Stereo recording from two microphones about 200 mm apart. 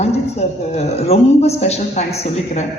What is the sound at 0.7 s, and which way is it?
Speech, 30° left (ahead or behind).